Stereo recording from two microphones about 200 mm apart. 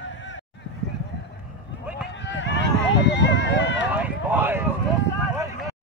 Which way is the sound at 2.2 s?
60° left (ahead or behind).